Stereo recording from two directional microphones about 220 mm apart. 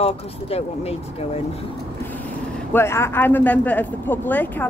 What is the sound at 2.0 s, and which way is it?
Vehicle, 10° left (ahead or behind).